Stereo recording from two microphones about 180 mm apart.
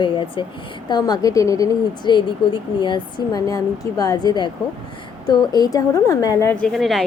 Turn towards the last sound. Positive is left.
turn(degrees=0)  # may be behind; listen again after turning